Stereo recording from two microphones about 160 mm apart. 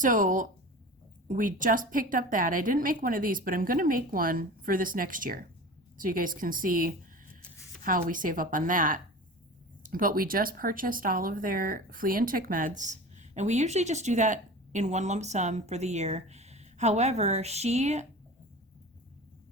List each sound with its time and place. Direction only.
0.0 s a woman's voice: 55° right (ahead or behind)